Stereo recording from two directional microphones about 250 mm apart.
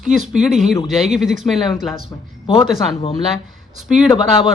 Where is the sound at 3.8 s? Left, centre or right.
Centre.